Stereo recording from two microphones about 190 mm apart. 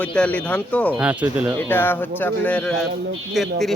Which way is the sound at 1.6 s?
10° left (ahead or behind).